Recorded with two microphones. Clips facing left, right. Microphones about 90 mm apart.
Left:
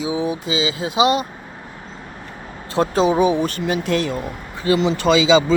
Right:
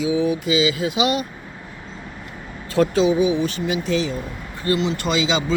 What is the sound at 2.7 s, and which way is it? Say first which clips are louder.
Speech: even; 35° left (ahead or behind).